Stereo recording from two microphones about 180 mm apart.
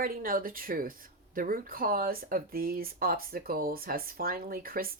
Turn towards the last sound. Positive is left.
turn(degrees=-55)  # may be behind; listen again after turning